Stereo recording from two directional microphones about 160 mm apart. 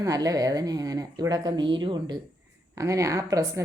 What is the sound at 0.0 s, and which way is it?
Speech, 20° right (ahead or behind).